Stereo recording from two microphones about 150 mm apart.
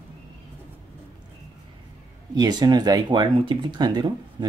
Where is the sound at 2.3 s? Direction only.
25° right (ahead or behind).